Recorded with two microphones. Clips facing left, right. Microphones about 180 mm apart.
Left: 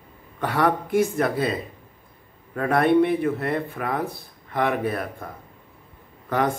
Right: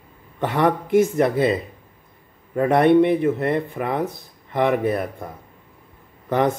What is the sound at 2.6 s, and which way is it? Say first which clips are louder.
Speech: right 4 dB; 20° right (ahead or behind).